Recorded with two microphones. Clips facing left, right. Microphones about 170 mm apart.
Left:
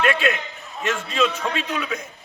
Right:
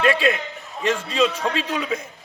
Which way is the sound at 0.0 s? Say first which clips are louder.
Right 2 dB; 35° right (ahead or behind).